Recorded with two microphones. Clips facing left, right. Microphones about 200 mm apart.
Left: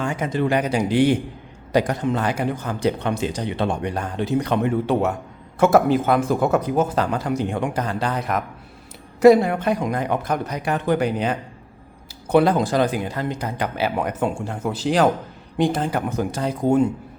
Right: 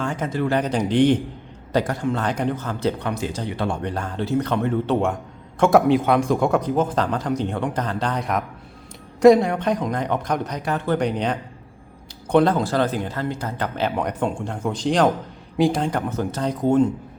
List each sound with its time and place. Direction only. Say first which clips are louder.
0.0 s speech: left 1 dB; 10° left (ahead or behind)
1.7 s a man's voice: left 2 dB; 20° left (ahead or behind)
2.2 s speech: even; 10° left (ahead or behind)